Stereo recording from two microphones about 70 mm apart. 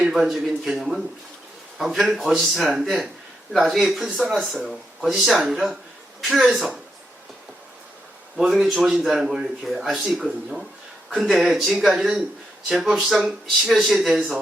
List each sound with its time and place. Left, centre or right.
0.0 s a man's voice: centre
8.4 s a man's voice: centre